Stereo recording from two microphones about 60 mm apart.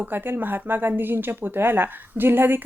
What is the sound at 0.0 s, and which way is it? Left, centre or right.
Speech, right.